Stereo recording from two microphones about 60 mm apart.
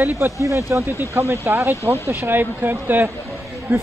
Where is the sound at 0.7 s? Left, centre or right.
Right.